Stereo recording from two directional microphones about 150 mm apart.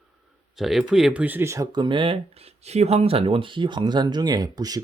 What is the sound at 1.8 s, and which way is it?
Speech, 35° right (ahead or behind).